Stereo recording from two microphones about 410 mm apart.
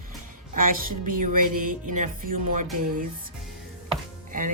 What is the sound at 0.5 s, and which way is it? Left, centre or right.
A woman's voice, centre.